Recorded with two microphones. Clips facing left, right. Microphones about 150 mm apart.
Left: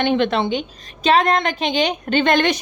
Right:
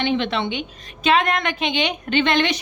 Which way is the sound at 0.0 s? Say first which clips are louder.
Left 4 dB; 50° left (ahead or behind).